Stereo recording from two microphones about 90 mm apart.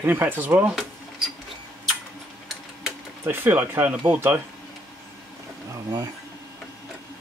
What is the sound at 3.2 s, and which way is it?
Speech, 25° right (ahead or behind).